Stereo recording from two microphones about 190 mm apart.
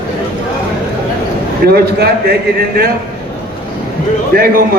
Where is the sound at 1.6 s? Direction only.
55° right (ahead or behind).